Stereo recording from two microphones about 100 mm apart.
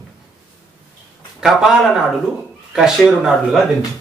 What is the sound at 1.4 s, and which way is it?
Speech, 5° right (ahead or behind).